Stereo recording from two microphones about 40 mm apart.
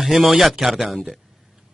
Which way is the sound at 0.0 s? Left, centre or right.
Centre.